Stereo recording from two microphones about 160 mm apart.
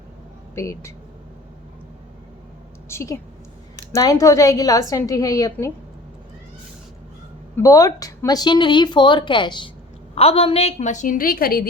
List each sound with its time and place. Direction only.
0.5 s speech: 20° left (ahead or behind)
2.9 s a woman's voice: 20° left (ahead or behind)
7.5 s a woman's voice: 20° left (ahead or behind); by 11.7 s 65° left (ahead or behind)